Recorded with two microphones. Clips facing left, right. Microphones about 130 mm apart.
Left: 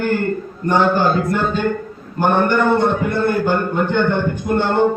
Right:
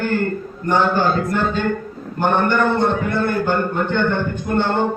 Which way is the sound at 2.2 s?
15° left (ahead or behind).